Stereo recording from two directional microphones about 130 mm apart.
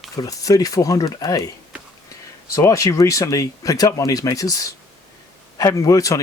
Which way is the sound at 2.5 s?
25° left (ahead or behind).